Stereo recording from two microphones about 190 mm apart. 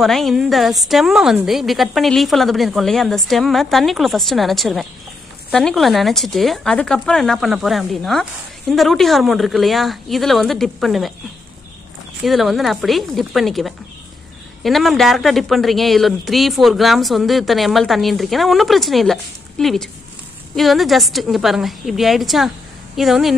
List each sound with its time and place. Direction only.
0.0 s speech: centre (ahead or behind)
12.3 s speech: centre (ahead or behind)